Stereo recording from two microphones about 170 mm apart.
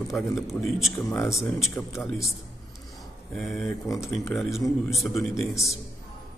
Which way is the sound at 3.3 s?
Centre (ahead or behind).